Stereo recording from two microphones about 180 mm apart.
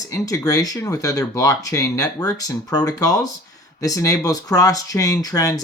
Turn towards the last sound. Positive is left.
turn(degrees=20)  # may be behind; listen again after turning